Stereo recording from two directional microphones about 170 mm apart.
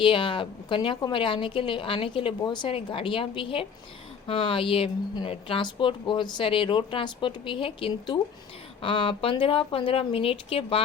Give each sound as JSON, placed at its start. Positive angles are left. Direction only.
{"t": 0.0, "sound": "a woman's voice", "side_deg": 30}